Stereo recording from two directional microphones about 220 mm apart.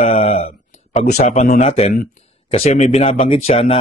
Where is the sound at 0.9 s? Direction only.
40° left (ahead or behind).